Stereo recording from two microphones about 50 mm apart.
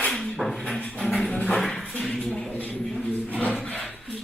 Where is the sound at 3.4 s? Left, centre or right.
Left.